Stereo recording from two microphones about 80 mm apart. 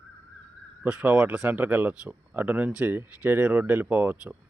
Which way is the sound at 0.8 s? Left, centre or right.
Centre.